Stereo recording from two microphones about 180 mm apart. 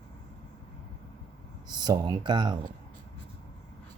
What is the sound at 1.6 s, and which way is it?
Speech, 25° right (ahead or behind).